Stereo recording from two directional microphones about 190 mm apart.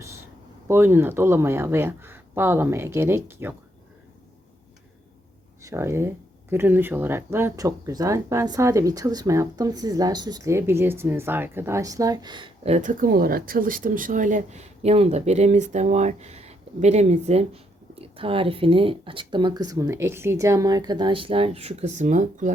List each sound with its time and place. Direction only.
0.7 s speech: 10° right (ahead or behind)
5.6 s speech: 15° right (ahead or behind); by 22.5 s 40° right (ahead or behind)